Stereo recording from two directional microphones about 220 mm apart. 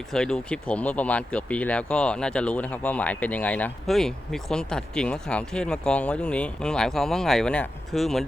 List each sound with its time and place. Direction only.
0.1 s speech: 5° left (ahead or behind)